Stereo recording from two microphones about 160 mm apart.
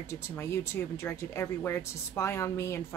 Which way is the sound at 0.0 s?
15° left (ahead or behind).